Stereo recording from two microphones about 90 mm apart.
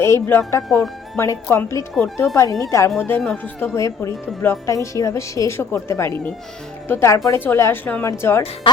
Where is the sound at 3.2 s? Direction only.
15° left (ahead or behind).